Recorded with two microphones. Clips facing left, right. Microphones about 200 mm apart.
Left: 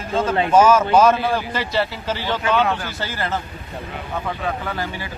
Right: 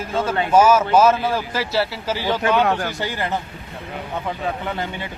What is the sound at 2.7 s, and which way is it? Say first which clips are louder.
Speech: right 3 dB; 40° right (ahead or behind).